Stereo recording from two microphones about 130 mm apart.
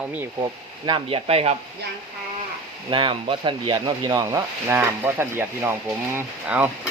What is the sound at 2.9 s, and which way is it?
Speech, 40° right (ahead or behind).